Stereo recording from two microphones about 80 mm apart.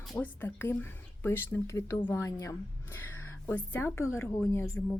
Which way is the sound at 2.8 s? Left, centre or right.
Left.